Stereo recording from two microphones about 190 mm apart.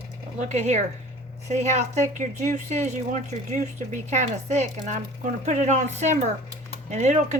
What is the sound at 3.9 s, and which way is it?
Speech, 40° right (ahead or behind).